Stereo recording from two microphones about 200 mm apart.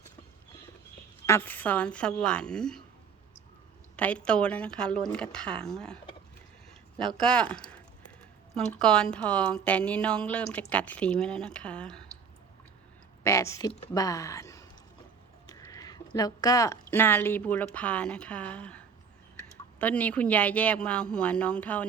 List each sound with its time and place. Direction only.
1.3 s a woman's voice: 10° left (ahead or behind)
3.9 s a woman's voice: 5° left (ahead or behind)
7.2 s a woman's voice: 5° left (ahead or behind)
13.2 s speech: 15° left (ahead or behind)
15.4 s a sound: 15° left (ahead or behind)
16.9 s speech: 10° left (ahead or behind)